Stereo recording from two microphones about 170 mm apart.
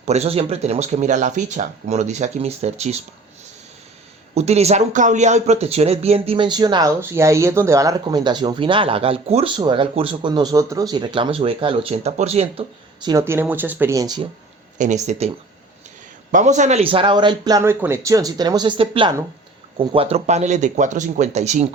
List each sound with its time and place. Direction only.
0.0 s speech: 40° right (ahead or behind)
4.4 s speech: 40° right (ahead or behind)
13.0 s speech: 20° right (ahead or behind)
14.8 s speech: 45° right (ahead or behind)
16.3 s speech: 45° right (ahead or behind)